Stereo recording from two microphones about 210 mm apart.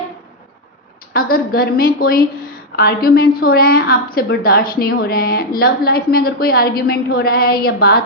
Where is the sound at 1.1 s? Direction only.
45° left (ahead or behind).